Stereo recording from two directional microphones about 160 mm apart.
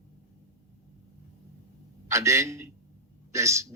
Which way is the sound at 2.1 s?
20° right (ahead or behind).